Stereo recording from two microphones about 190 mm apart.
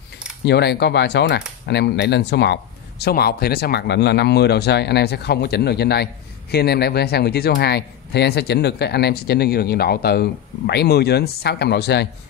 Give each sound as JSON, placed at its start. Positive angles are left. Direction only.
{"t": 0.5, "sound": "a man's voice", "side_deg": 60}